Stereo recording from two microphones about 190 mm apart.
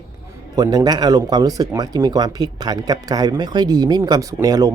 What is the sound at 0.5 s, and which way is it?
Speech, 20° right (ahead or behind).